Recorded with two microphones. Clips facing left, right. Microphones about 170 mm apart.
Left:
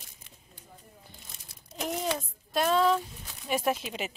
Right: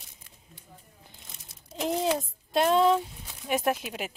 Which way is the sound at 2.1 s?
20° right (ahead or behind).